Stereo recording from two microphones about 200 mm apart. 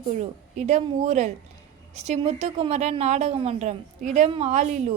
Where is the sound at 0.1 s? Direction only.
35° right (ahead or behind).